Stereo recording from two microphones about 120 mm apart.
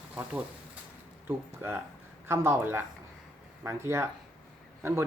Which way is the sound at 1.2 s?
15° right (ahead or behind).